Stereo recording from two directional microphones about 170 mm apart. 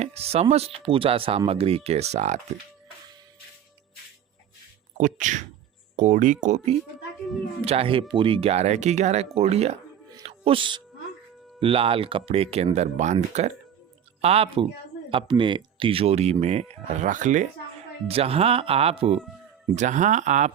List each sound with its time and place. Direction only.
0.0 s speech: 35° right (ahead or behind)
4.9 s speech: 50° right (ahead or behind)
18.1 s speech: 35° right (ahead or behind)